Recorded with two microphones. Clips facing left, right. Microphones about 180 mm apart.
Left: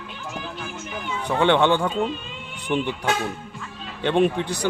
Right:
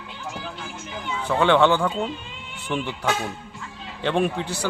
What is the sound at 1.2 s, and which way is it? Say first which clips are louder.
Speech: right 1 dB; 20° left (ahead or behind).